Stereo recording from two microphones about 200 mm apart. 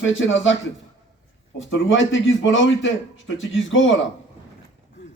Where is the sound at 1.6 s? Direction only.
70° left (ahead or behind).